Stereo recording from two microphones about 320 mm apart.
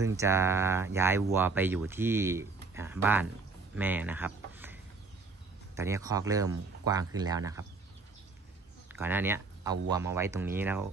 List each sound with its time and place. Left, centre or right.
0.0 s speech: centre
5.8 s speech: centre
8.9 s speech: centre